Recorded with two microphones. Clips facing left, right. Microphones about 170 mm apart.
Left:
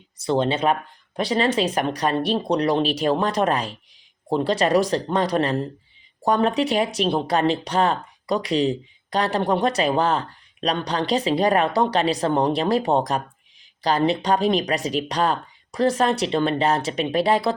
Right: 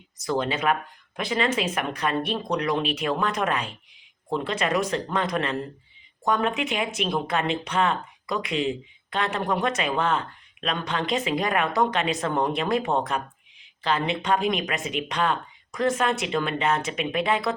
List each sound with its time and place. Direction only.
0.2 s speech: 30° left (ahead or behind)